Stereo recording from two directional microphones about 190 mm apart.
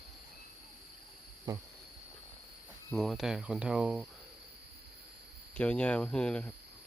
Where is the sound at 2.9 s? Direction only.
Centre (ahead or behind).